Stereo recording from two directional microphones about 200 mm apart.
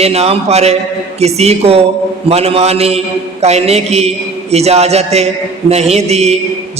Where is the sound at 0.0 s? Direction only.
30° right (ahead or behind).